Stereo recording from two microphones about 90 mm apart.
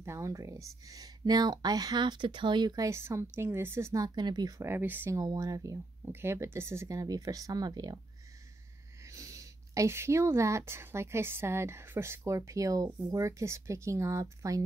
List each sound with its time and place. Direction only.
0.0 s speech: 35° right (ahead or behind); by 2.8 s 55° right (ahead or behind)
2.8 s a woman's voice: 30° right (ahead or behind)
3.9 s speech: 45° right (ahead or behind)
4.6 s a woman's voice: 25° right (ahead or behind)
5.1 s speech: 45° right (ahead or behind)
6.0 s speech: 25° right (ahead or behind); by 8.0 s 50° right (ahead or behind)
9.0 s speech: 35° right (ahead or behind)